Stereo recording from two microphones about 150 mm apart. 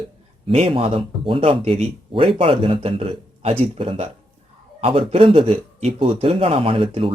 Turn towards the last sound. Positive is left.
turn(degrees=-35)  # may be behind; listen again after turning